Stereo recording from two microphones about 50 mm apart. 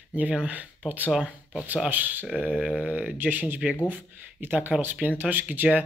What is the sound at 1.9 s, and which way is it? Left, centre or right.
Speech, right.